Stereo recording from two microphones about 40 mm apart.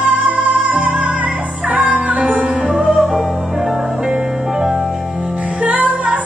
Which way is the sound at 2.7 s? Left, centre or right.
Centre.